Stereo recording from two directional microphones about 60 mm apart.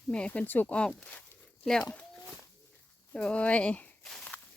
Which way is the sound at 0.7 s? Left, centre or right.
Centre.